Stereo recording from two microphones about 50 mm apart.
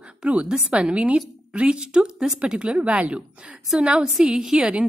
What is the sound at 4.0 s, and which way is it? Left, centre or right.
Speech, centre.